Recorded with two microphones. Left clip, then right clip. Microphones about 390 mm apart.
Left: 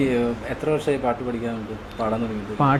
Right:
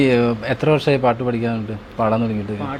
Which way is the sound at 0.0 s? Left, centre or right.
Right.